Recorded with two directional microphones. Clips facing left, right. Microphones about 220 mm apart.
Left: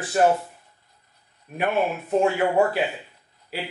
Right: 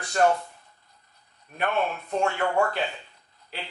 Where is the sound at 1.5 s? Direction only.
10° left (ahead or behind).